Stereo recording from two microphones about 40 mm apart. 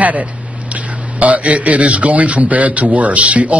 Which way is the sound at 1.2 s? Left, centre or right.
Right.